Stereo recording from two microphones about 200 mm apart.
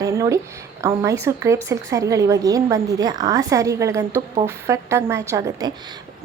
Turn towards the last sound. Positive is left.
turn(degrees=-15)  # may be behind; listen again after turning